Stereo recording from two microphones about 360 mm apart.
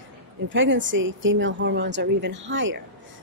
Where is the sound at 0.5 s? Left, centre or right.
Right.